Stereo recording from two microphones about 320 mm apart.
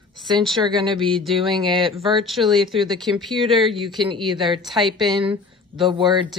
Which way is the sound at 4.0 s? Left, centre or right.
Centre.